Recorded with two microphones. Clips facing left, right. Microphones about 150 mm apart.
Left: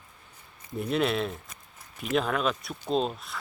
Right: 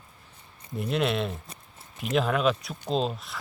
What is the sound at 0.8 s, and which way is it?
Speech, centre (ahead or behind).